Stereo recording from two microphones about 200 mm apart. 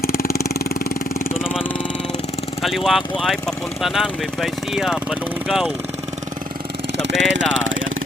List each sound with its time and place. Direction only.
0.0 s vehicle: 50° left (ahead or behind)
2.6 s speech: centre (ahead or behind)
6.9 s speech: 60° right (ahead or behind)